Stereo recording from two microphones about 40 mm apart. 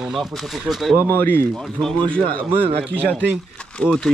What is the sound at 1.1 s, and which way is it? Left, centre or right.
Speech, left.